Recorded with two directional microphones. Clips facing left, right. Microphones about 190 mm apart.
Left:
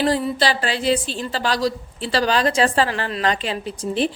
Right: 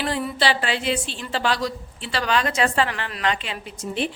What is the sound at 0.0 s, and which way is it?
A woman's voice, 35° left (ahead or behind).